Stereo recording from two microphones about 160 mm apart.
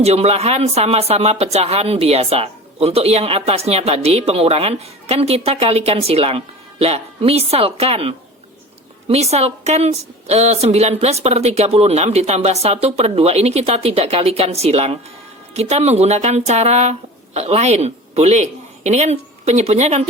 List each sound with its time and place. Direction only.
0.0 s a woman's voice: 40° right (ahead or behind)